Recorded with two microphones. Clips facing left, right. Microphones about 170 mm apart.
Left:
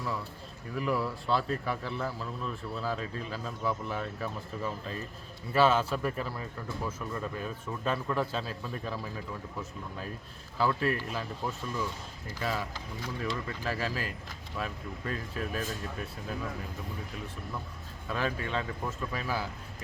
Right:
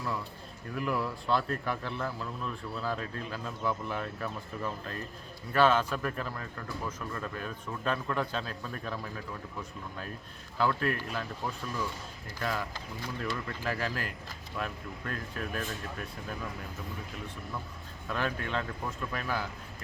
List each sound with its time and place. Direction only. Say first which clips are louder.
0.8 s a man's voice: left 1 dB; centre (ahead or behind)
10.6 s a man's voice: left 1 dB; 5° left (ahead or behind)
18.1 s a man's voice: left 1 dB; 5° left (ahead or behind)